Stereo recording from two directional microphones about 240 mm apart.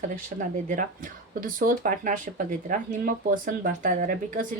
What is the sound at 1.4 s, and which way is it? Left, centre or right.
Speech, right.